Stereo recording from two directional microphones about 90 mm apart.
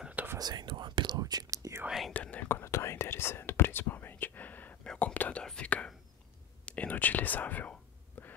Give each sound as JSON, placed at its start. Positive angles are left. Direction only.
{"t": 0.0, "sound": "whispering", "side_deg": -15}
{"t": 0.4, "sound": "whispering", "side_deg": -55}
{"t": 1.2, "sound": "whispering", "side_deg": -45}
{"t": 1.9, "sound": "whispering", "side_deg": 0}
{"t": 2.1, "sound": "whispering", "side_deg": 20}
{"t": 6.6, "sound": "speech", "side_deg": 15}
{"t": 8.2, "sound": "whispering", "side_deg": 20}